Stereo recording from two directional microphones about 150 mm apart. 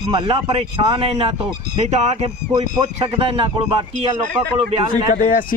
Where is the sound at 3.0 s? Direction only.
40° right (ahead or behind).